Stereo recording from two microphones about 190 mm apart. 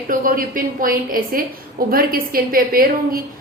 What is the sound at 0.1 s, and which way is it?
A woman's voice, 45° right (ahead or behind).